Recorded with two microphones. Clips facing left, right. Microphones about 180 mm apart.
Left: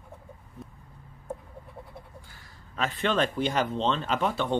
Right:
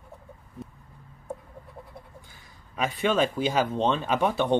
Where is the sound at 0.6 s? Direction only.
Centre (ahead or behind).